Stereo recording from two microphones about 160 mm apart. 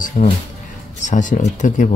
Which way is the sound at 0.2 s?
50° left (ahead or behind).